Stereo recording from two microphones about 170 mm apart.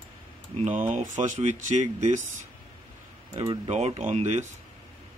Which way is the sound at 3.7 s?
40° right (ahead or behind).